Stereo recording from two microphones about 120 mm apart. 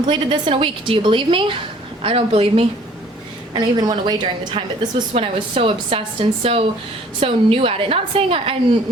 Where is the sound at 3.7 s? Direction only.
35° right (ahead or behind).